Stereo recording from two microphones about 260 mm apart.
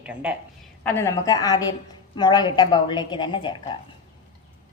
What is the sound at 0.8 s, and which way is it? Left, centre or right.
A woman's voice, centre.